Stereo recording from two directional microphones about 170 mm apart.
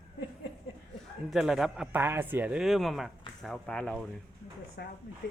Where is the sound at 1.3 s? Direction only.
Centre (ahead or behind).